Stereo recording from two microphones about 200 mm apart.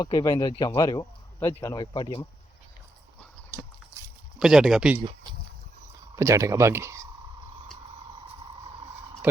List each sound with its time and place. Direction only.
0.0 s speech: 20° left (ahead or behind)
3.5 s a sound: 5° right (ahead or behind)
6.1 s speech: 15° right (ahead or behind)
9.2 s speech: 10° right (ahead or behind)